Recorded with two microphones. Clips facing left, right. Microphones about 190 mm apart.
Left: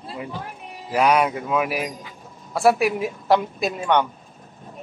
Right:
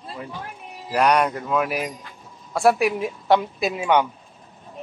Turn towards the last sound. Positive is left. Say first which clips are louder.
# right 1 dB
turn(degrees=-5)  # may be behind; listen again after turning